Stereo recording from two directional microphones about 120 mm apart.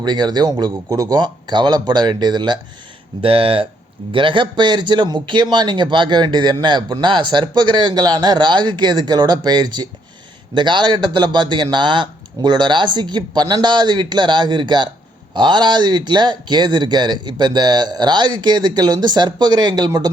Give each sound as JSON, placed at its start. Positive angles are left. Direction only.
{"t": 0.0, "sound": "a man's voice", "side_deg": -40}
{"t": 3.2, "sound": "a man's voice", "side_deg": -50}